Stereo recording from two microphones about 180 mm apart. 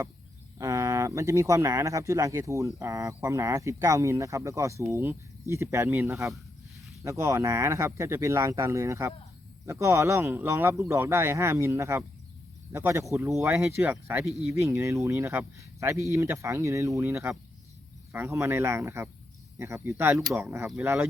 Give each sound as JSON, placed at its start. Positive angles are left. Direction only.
{"t": 0.6, "sound": "speech", "side_deg": -15}